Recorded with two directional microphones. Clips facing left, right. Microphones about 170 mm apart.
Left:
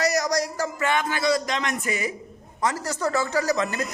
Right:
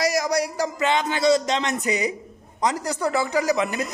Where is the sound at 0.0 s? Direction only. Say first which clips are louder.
Right 1 dB; 10° right (ahead or behind).